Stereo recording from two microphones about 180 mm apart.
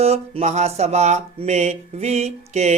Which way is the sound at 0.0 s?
35° right (ahead or behind).